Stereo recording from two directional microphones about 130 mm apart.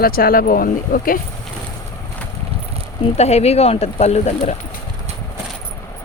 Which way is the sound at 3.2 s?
55° left (ahead or behind).